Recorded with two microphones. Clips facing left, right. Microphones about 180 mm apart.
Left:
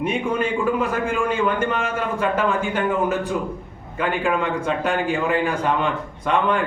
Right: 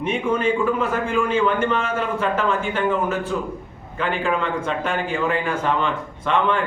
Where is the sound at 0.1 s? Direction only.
10° left (ahead or behind).